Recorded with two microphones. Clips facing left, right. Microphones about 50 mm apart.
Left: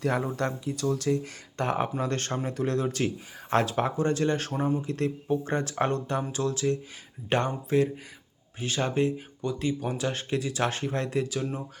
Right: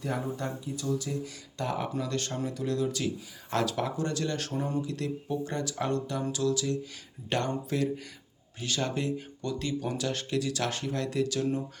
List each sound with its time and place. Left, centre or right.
0.0 s speech: left